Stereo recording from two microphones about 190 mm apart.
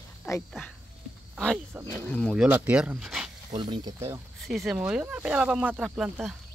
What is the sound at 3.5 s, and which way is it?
Speech, 25° right (ahead or behind).